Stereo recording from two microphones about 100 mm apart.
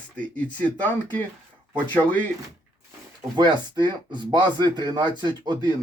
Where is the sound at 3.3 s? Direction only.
45° right (ahead or behind).